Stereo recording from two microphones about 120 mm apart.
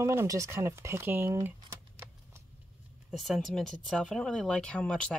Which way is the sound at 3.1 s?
Centre (ahead or behind).